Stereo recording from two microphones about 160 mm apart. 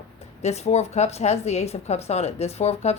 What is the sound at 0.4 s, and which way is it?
Speech, 45° left (ahead or behind).